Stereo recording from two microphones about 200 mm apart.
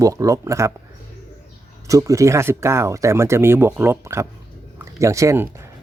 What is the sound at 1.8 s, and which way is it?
A man's voice, 15° right (ahead or behind).